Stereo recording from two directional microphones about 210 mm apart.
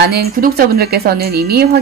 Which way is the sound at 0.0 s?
50° right (ahead or behind).